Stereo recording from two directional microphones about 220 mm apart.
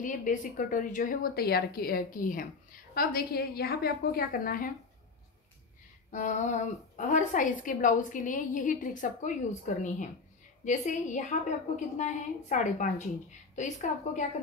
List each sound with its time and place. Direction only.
0.0 s a woman's voice: 35° left (ahead or behind)
6.1 s a woman's voice: 35° left (ahead or behind)